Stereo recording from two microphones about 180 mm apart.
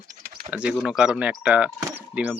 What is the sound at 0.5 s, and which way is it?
Speech, 5° right (ahead or behind).